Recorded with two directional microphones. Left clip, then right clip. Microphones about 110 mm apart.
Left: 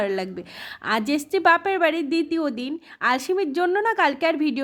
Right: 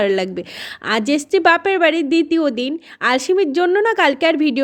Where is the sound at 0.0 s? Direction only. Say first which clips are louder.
Right 8 dB; 40° right (ahead or behind).